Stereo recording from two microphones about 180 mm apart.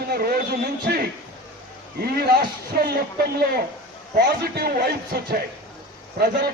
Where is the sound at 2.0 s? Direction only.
55° right (ahead or behind).